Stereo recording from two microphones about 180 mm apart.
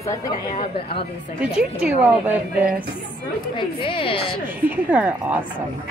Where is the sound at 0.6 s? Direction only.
30° left (ahead or behind).